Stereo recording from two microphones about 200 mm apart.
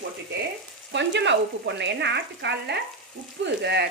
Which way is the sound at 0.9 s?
60° right (ahead or behind).